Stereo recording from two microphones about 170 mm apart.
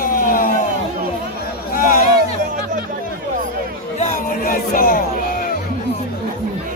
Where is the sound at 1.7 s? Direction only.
55° left (ahead or behind).